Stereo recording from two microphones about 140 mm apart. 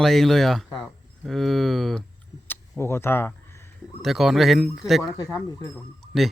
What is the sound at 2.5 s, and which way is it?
Speech, 15° left (ahead or behind).